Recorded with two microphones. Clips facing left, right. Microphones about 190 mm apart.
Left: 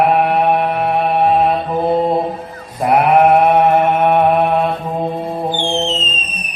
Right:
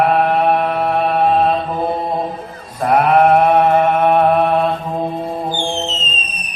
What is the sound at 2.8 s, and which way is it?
Mantra, 15° left (ahead or behind).